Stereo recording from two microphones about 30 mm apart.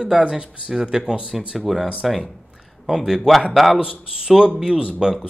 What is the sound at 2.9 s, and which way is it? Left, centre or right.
Speech, centre.